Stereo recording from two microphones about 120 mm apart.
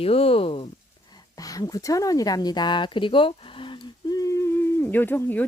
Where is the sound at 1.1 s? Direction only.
35° left (ahead or behind).